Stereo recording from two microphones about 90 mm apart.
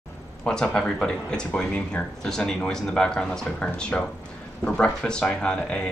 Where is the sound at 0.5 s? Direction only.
10° left (ahead or behind).